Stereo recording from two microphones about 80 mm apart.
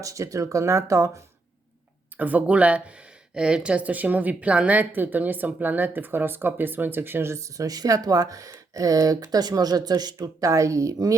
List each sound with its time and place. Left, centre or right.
0.0 s speech: right
2.1 s speech: centre; by 10.2 s right
10.2 s speech: right